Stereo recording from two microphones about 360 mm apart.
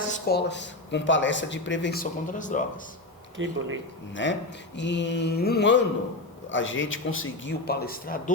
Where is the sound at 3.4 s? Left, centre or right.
Right.